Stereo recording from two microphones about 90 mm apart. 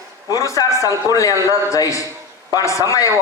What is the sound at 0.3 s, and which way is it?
A man's voice, 40° left (ahead or behind).